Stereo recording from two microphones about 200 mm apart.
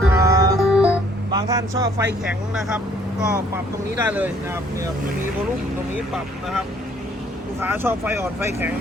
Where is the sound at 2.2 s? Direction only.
Centre (ahead or behind).